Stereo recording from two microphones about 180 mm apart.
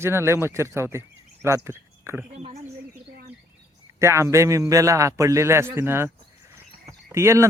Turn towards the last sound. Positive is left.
turn(degrees=-15)  # may be behind; listen again after turning